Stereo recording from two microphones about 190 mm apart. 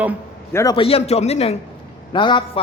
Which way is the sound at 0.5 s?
20° left (ahead or behind).